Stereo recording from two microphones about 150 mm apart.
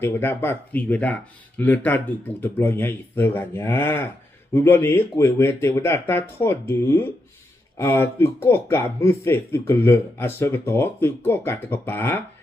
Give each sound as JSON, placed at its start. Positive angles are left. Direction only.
{"t": 0.0, "sound": "speech", "side_deg": 15}